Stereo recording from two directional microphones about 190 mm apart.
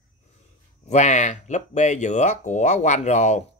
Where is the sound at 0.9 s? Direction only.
40° left (ahead or behind).